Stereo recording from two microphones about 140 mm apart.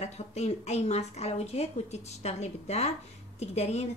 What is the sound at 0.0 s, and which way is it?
Speech, 50° left (ahead or behind).